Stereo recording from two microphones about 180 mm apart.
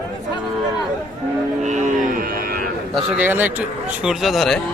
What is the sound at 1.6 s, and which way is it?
Cattle, 40° right (ahead or behind).